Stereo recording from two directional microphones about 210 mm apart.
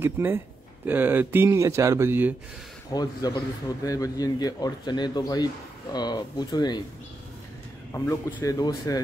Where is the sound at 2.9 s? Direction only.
20° left (ahead or behind).